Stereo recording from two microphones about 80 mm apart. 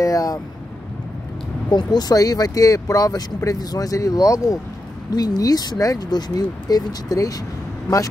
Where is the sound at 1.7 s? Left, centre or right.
Left.